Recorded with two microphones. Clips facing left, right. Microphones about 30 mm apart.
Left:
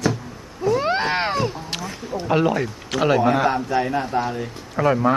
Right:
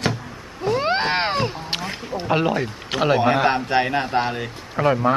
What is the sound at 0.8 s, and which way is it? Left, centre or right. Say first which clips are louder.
Speech: right 2 dB; right.